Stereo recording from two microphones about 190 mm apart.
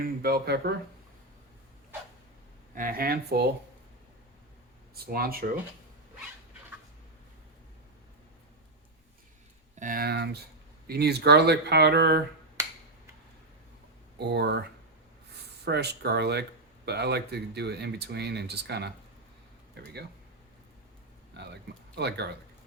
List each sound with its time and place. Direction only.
0.0 s speech: 55° right (ahead or behind)
2.7 s speech: 50° right (ahead or behind)
5.0 s speech: 50° right (ahead or behind)
9.7 s speech: 45° right (ahead or behind); by 12.2 s 60° right (ahead or behind)
14.2 s speech: 60° right (ahead or behind)
15.6 s speech: 60° right (ahead or behind)
21.3 s speech: 60° right (ahead or behind)